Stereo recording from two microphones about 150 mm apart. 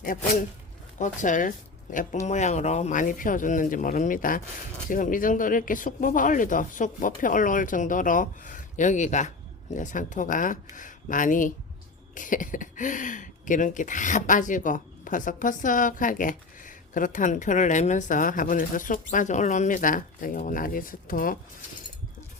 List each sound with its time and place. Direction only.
0.9 s speech: 60° left (ahead or behind)